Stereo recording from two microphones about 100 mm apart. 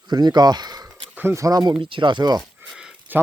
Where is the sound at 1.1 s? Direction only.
20° right (ahead or behind).